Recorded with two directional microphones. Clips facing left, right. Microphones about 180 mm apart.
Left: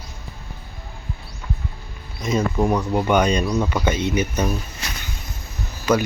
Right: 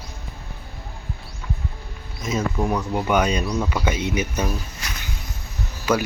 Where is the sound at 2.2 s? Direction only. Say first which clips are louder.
Left 3 dB; 5° right (ahead or behind).